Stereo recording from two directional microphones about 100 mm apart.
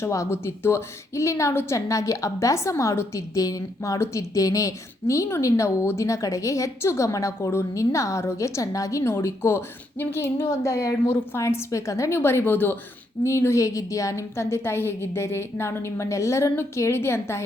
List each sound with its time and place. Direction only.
0.0 s a woman's voice: 30° left (ahead or behind)